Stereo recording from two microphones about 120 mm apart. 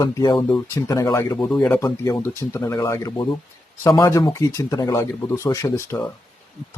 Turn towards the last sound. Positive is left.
turn(degrees=20)  # may be behind; listen again after turning